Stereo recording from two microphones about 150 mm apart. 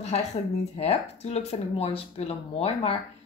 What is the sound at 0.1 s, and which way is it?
Speech, 45° left (ahead or behind).